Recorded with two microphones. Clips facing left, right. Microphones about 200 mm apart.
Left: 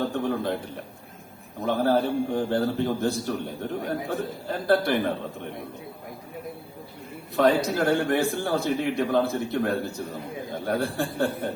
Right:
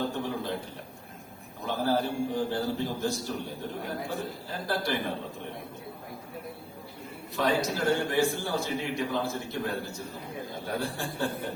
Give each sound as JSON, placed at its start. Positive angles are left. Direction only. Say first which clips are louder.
{"t": 0.0, "sound": "a sound", "louder": "left 5 dB", "side_deg": 60}
{"t": 1.6, "sound": "a man's voice", "louder": "left 5 dB", "side_deg": 60}
{"t": 7.3, "sound": "a man's voice", "louder": "left 6 dB", "side_deg": 60}